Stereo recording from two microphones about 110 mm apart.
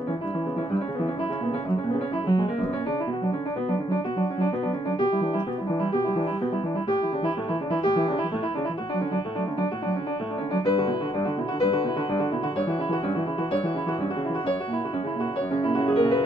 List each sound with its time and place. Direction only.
2.2 s music: 45° left (ahead or behind)
6.9 s keyboard: 50° left (ahead or behind)
10.6 s music: 55° left (ahead or behind)
15.5 s music: 55° left (ahead or behind)